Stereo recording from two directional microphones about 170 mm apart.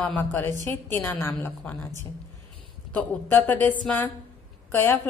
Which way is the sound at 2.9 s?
10° left (ahead or behind).